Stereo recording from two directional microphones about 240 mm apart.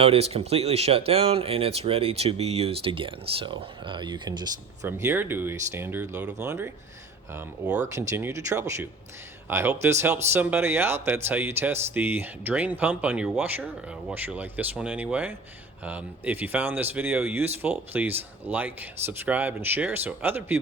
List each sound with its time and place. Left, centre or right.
0.0 s speech: right
7.9 s speech: centre